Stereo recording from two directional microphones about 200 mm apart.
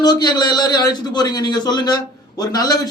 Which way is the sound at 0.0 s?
20° left (ahead or behind).